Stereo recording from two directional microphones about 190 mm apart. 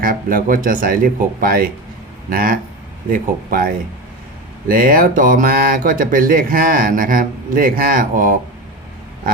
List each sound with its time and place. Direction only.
0.0 s speech: 45° right (ahead or behind)
4.7 s speech: 45° right (ahead or behind)